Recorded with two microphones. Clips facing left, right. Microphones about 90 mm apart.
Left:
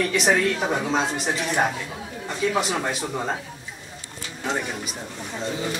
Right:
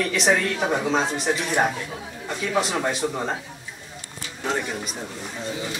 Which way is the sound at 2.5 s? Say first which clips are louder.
Right 4 dB; centre (ahead or behind).